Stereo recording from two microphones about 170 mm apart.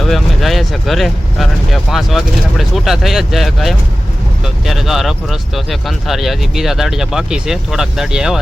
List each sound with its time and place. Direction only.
0.0 s speech: centre (ahead or behind)